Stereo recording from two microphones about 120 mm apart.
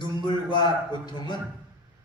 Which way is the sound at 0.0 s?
40° left (ahead or behind).